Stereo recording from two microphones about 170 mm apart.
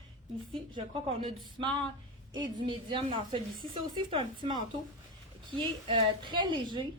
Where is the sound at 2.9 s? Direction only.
30° right (ahead or behind).